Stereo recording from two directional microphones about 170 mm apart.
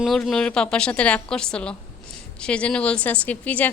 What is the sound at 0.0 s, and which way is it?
Laughter, centre (ahead or behind).